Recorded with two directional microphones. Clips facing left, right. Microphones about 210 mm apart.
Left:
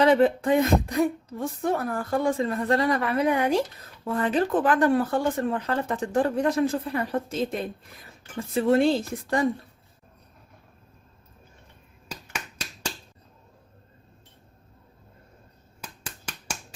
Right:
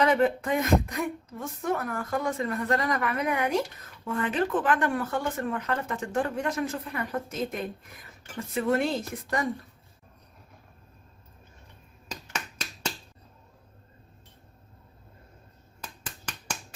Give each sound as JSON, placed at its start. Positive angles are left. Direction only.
{"t": 0.0, "sound": "speech", "side_deg": 30}